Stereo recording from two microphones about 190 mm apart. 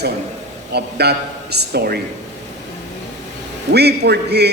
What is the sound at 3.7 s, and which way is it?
Speech, 60° right (ahead or behind).